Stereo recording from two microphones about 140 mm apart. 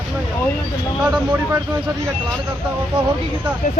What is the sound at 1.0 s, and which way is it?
Speech, 10° right (ahead or behind).